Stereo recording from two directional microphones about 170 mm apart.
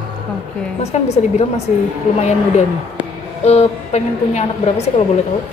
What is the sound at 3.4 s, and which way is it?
A woman's voice, 40° left (ahead or behind).